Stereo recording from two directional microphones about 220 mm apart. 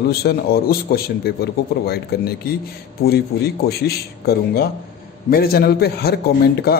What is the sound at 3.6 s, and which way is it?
A man's voice, 45° left (ahead or behind).